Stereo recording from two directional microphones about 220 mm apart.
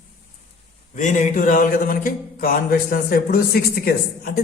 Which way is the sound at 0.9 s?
35° left (ahead or behind).